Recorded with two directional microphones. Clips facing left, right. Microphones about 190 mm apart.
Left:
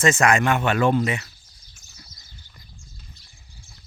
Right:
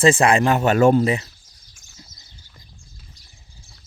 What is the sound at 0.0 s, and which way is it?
Speech, 30° right (ahead or behind).